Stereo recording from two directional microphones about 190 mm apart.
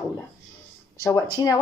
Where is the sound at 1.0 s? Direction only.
20° left (ahead or behind).